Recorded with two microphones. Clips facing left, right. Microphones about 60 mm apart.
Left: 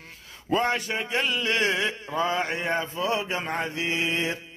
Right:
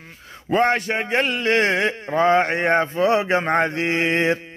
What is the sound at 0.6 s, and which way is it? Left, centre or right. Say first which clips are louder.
A man's voice: right 7 dB; right.